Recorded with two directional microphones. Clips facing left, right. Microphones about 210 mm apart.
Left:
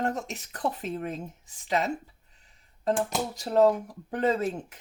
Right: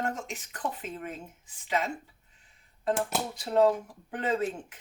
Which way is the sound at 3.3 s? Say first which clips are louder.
Left 2 dB; 40° left (ahead or behind).